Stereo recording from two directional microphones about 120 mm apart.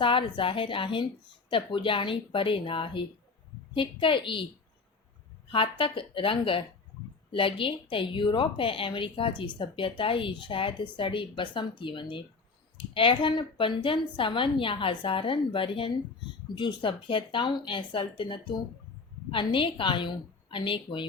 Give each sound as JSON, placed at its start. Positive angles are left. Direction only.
{"t": 0.0, "sound": "a woman's voice", "side_deg": 45}
{"t": 5.5, "sound": "a woman's voice", "side_deg": 45}